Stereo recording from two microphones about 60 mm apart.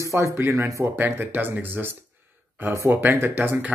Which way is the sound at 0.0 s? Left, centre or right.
Right.